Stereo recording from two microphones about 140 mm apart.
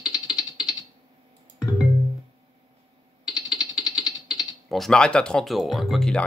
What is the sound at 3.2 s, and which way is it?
Speech, 5° right (ahead or behind).